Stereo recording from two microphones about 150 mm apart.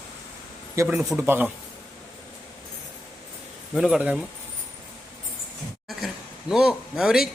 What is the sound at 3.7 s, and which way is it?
Speech, 5° right (ahead or behind).